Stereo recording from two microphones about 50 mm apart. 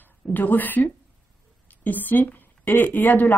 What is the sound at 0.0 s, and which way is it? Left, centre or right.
A woman's voice, left.